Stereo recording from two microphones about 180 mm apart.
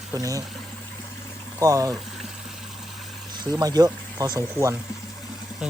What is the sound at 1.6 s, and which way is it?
Speech, 20° right (ahead or behind).